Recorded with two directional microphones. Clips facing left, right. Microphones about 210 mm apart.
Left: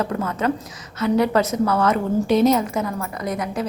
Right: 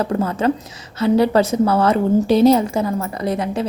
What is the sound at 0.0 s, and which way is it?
A woman's voice, 30° right (ahead or behind).